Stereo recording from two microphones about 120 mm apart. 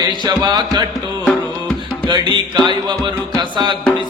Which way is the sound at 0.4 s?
35° right (ahead or behind).